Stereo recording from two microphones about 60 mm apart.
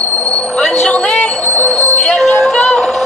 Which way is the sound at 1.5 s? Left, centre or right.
Centre.